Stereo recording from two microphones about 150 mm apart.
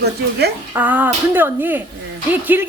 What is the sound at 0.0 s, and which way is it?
Speech, 90° right.